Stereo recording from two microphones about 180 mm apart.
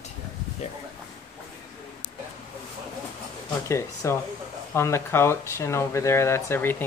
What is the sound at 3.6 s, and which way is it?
Speech, 15° left (ahead or behind).